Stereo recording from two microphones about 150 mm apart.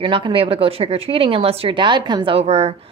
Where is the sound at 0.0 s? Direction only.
35° right (ahead or behind).